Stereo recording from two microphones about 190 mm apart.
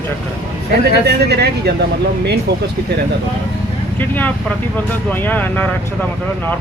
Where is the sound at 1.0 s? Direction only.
60° right (ahead or behind).